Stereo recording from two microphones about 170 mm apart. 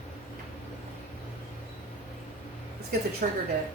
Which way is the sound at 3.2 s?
55° right (ahead or behind).